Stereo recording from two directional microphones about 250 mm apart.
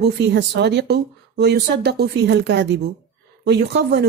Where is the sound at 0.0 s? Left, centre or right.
Right.